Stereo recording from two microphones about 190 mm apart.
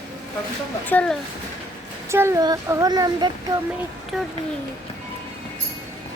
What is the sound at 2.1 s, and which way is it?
Speech, 15° right (ahead or behind).